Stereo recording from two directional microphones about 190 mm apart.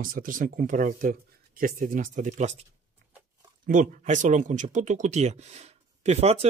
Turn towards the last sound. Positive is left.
turn(degrees=-35)  # may be behind; listen again after turning